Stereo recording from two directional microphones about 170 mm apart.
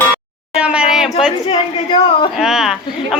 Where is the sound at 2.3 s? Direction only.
5° right (ahead or behind).